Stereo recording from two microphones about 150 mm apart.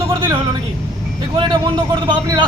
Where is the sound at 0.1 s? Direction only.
30° right (ahead or behind).